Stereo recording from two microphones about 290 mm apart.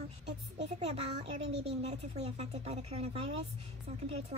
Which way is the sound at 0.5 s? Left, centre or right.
Right.